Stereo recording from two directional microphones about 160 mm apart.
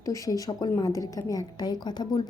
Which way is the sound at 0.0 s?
20° left (ahead or behind).